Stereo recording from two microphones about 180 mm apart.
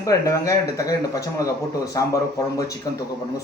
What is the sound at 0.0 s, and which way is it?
A man's voice, 20° left (ahead or behind).